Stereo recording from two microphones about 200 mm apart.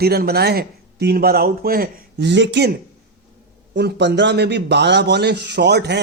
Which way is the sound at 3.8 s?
55° right (ahead or behind).